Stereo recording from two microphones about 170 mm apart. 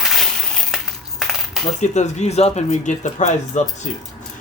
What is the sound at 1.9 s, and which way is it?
Speech, 45° left (ahead or behind).